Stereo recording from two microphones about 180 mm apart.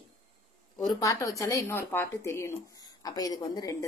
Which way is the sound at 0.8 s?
20° left (ahead or behind).